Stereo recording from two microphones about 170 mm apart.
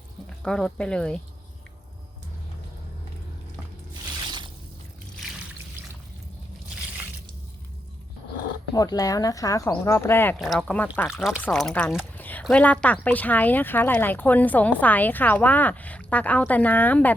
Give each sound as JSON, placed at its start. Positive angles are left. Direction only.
{"t": 0.4, "sound": "speech", "side_deg": 5}
{"t": 8.7, "sound": "speech", "side_deg": 20}
{"t": 10.3, "sound": "speech", "side_deg": 0}